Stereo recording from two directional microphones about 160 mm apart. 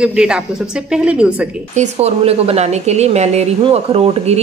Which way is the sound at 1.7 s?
45° right (ahead or behind).